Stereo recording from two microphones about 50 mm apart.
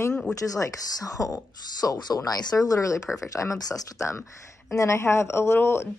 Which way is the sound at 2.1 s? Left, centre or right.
Left.